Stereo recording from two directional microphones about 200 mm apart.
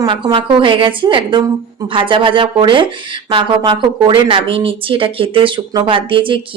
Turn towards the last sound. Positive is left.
turn(degrees=-25)  # may be behind; listen again after turning